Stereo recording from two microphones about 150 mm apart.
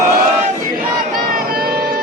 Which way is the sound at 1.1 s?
75° right (ahead or behind).